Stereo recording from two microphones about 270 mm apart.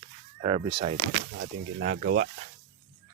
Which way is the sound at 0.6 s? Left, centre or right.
Centre.